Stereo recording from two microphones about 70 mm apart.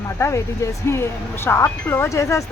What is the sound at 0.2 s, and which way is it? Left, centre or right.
Speech, left.